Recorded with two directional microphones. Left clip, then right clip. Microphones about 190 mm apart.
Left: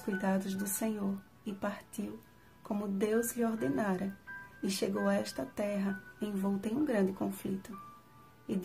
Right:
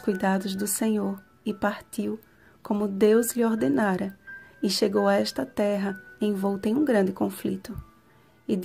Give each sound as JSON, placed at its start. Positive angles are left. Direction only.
{"t": 0.0, "sound": "speech", "side_deg": -40}